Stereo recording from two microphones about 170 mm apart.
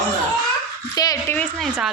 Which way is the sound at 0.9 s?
20° left (ahead or behind).